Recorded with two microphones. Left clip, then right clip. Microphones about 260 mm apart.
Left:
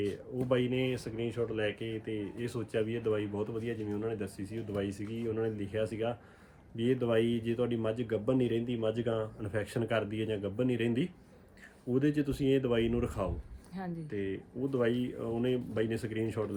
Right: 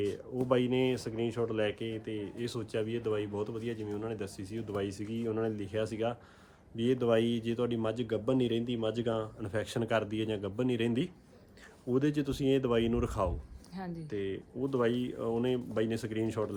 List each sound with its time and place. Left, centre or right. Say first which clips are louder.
0.0 s speech: right 1 dB; centre
6.7 s speech: right 1 dB; centre